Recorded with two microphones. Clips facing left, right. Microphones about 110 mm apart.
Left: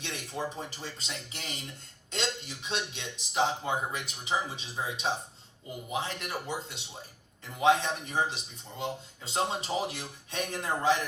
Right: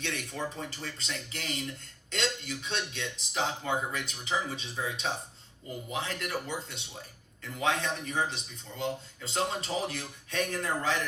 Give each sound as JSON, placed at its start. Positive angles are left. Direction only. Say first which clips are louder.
{"t": 0.0, "sound": "speech", "louder": "even", "side_deg": 30}